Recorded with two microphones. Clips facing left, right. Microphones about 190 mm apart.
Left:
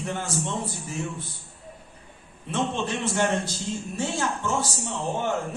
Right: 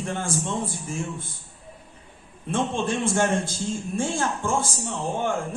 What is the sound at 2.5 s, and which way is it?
A man's voice, 50° right (ahead or behind).